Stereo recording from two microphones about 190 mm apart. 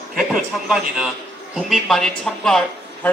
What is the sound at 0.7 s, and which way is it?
A man's voice, 5° right (ahead or behind).